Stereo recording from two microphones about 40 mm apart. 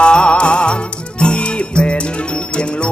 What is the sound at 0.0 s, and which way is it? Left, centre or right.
Music, left.